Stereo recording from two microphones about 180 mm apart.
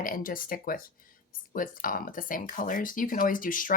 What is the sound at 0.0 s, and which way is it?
Speech, 50° left (ahead or behind).